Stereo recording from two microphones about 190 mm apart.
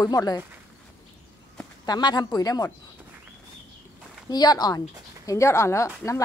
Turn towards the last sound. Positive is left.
turn(degrees=15)  # may be behind; listen again after turning